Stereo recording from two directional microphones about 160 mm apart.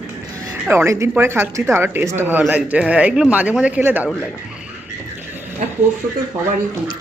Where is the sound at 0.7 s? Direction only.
15° right (ahead or behind).